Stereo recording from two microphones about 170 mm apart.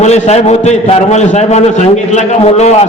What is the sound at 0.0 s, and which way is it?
A man's voice, 40° left (ahead or behind).